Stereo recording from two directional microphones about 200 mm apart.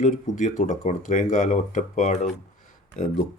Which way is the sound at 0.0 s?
40° left (ahead or behind).